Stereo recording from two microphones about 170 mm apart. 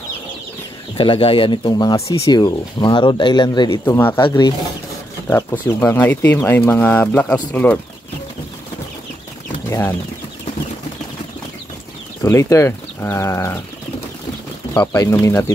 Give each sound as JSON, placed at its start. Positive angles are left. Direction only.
{"t": 0.9, "sound": "speech", "side_deg": 30}
{"t": 3.8, "sound": "speech", "side_deg": 10}
{"t": 4.3, "sound": "speech", "side_deg": 25}
{"t": 9.7, "sound": "speech", "side_deg": 15}
{"t": 12.2, "sound": "speech", "side_deg": 15}
{"t": 14.7, "sound": "speech", "side_deg": 15}